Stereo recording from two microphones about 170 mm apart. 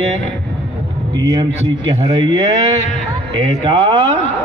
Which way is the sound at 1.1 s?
25° right (ahead or behind).